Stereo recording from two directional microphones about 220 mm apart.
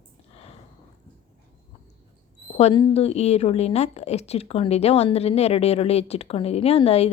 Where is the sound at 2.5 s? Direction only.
25° left (ahead or behind).